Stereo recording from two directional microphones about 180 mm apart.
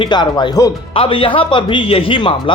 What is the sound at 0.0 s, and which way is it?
Speech, 25° left (ahead or behind).